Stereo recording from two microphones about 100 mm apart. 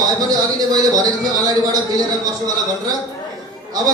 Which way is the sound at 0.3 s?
40° right (ahead or behind).